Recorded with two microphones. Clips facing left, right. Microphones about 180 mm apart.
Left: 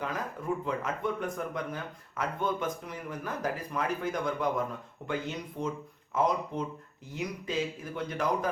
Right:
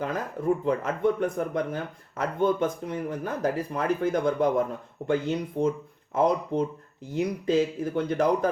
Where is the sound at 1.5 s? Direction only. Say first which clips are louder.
Right 7 dB; 30° right (ahead or behind).